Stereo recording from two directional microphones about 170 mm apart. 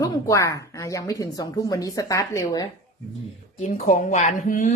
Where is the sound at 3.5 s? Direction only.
45° left (ahead or behind).